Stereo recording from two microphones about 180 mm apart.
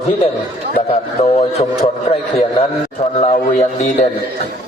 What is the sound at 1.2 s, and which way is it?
Speech, 35° left (ahead or behind).